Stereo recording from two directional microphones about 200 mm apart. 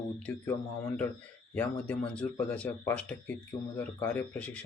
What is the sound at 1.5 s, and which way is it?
Speech, 5° left (ahead or behind).